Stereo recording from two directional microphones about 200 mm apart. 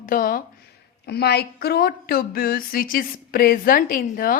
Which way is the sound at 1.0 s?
55° left (ahead or behind).